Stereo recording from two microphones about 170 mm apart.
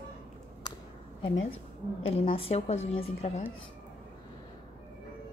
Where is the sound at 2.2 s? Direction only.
35° left (ahead or behind).